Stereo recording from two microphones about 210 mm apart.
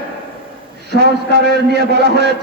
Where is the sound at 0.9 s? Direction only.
50° right (ahead or behind).